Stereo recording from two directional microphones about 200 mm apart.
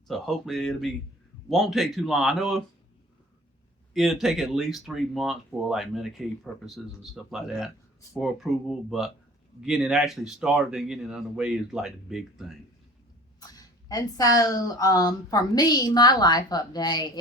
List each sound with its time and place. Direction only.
0.1 s speech: centre (ahead or behind)
3.9 s speech: centre (ahead or behind)
13.4 s speech: 20° left (ahead or behind)